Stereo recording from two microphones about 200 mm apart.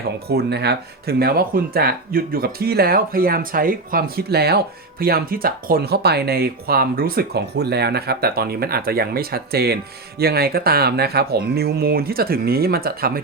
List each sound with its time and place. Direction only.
0.3 s speech: 55° right (ahead or behind)